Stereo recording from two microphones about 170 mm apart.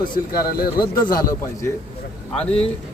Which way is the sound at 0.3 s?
60° left (ahead or behind).